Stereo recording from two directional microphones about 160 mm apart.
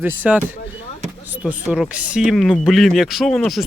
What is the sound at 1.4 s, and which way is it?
Speech, 5° right (ahead or behind).